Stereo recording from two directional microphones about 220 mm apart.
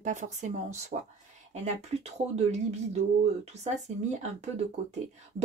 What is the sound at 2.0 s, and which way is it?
Speech, 30° right (ahead or behind).